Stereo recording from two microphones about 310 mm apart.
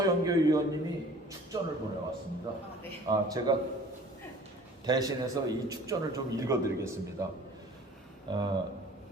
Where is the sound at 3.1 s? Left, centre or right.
Centre.